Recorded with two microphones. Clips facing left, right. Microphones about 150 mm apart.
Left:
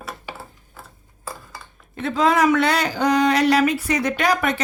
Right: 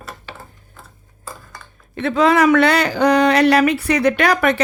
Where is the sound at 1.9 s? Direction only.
75° right (ahead or behind).